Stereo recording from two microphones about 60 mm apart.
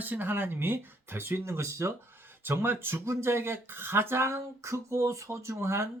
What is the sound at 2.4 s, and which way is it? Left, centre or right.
Speech, right.